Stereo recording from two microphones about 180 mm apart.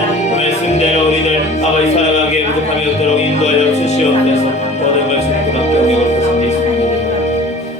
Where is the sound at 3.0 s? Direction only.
40° left (ahead or behind).